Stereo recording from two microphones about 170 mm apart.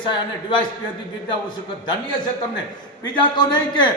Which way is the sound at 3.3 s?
25° left (ahead or behind).